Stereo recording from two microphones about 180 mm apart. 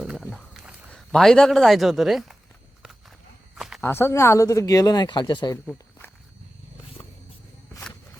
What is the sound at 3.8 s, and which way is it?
Speech, 15° left (ahead or behind).